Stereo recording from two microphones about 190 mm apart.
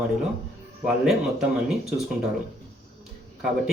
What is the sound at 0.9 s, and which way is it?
Speech, 5° right (ahead or behind).